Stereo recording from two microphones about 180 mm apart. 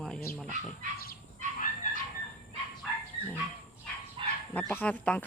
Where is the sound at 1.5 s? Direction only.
45° left (ahead or behind).